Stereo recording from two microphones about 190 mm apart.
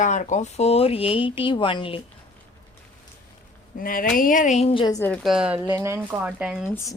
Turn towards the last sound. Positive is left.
turn(degrees=15)  # may be behind; listen again after turning